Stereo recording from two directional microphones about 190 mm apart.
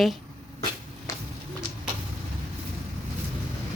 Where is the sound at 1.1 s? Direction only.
15° left (ahead or behind).